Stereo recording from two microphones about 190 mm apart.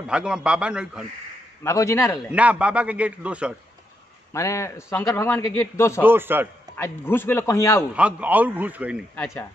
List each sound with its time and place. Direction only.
0.0 s a man's voice: 5° right (ahead or behind)
1.6 s a man's voice: 15° left (ahead or behind)
2.3 s a man's voice: 5° right (ahead or behind)
4.3 s a man's voice: 15° left (ahead or behind)
6.0 s a man's voice: 10° right (ahead or behind)
6.8 s a man's voice: 10° left (ahead or behind)
7.9 s a man's voice: 5° right (ahead or behind)
9.1 s a man's voice: 10° left (ahead or behind)